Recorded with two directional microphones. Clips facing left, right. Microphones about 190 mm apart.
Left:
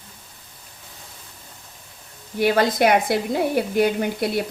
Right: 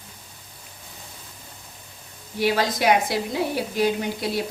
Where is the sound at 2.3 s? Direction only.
55° left (ahead or behind).